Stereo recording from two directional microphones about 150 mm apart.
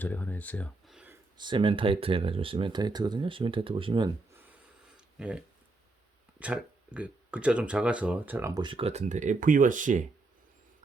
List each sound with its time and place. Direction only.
0.0 s speech: 10° left (ahead or behind)
0.9 s a sound: 5° right (ahead or behind)
1.4 s speech: 30° right (ahead or behind)
4.9 s a sound: 5° right (ahead or behind)
6.4 s speech: 10° right (ahead or behind)
8.5 s speech: 35° right (ahead or behind); by 10.0 s 60° right (ahead or behind)